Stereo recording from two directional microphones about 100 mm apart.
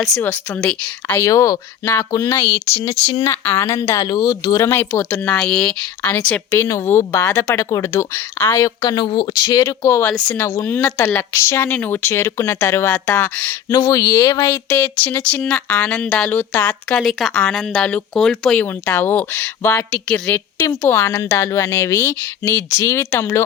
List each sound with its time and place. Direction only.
0.6 s a woman's voice: 10° left (ahead or behind)
1.2 s speech: 35° left (ahead or behind)
3.4 s a woman's voice: 20° left (ahead or behind)
4.0 s speech: 40° left (ahead or behind)
4.7 s a woman's voice: 20° left (ahead or behind)
6.5 s a woman's voice: 30° left (ahead or behind)
8.4 s speech: 40° left (ahead or behind)
10.0 s a woman's voice: 15° left (ahead or behind)
10.3 s a woman's voice: 25° left (ahead or behind)
13.7 s speech: 35° left (ahead or behind)
14.4 s a woman's voice: 20° left (ahead or behind)
17.0 s speech: centre (ahead or behind)
18.6 s a woman's voice: 20° left (ahead or behind)
19.9 s a woman's voice: 10° left (ahead or behind); by 23.4 s 25° left (ahead or behind)